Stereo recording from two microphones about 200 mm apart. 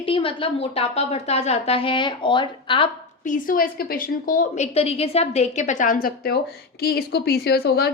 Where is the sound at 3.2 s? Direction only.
40° left (ahead or behind).